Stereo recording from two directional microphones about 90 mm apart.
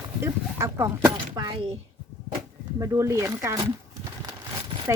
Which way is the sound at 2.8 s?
35° right (ahead or behind).